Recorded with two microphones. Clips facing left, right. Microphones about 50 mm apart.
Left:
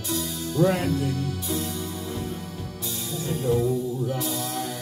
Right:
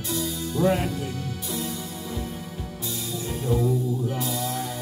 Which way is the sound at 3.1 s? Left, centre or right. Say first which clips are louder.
Left 4 dB; right.